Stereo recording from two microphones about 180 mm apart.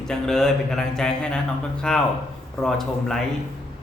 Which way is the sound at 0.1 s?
5° left (ahead or behind).